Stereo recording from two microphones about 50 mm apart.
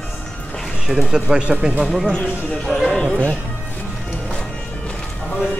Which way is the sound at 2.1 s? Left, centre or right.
Left.